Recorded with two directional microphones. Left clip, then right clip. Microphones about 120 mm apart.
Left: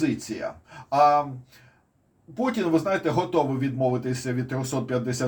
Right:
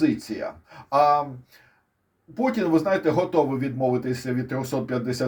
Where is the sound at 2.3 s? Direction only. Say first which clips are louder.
Right 2 dB; 55° right (ahead or behind).